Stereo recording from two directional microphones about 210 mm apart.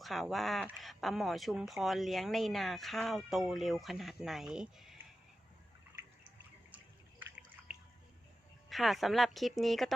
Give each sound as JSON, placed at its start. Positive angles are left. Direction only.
{"t": 0.0, "sound": "speech", "side_deg": 0}
{"t": 5.9, "sound": "drip", "side_deg": -15}
{"t": 7.2, "sound": "drip", "side_deg": -5}
{"t": 8.7, "sound": "speech", "side_deg": 0}